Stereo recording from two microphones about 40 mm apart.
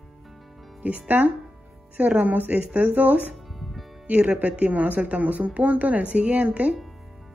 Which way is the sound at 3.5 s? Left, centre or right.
Centre.